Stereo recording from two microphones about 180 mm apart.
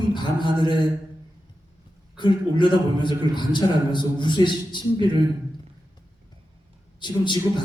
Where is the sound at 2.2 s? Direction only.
25° left (ahead or behind).